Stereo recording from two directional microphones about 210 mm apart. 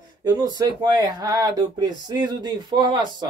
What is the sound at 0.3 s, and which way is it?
Speech, 20° right (ahead or behind).